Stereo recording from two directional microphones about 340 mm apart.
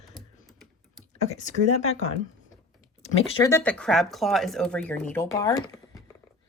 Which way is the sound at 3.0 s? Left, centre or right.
Centre.